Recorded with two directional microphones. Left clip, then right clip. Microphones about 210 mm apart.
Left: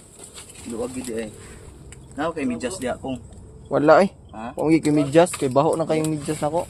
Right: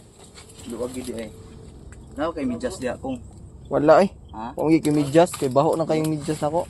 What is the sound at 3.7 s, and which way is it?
Speech, 5° left (ahead or behind).